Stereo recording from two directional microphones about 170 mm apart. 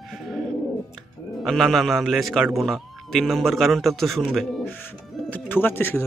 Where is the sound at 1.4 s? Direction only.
Centre (ahead or behind).